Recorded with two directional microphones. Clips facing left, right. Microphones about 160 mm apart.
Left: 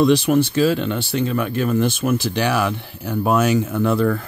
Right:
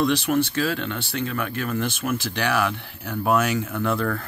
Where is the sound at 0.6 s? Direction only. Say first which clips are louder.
Left 7 dB; 20° left (ahead or behind).